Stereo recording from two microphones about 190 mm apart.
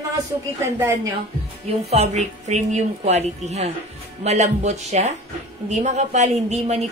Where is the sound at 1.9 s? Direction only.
35° right (ahead or behind).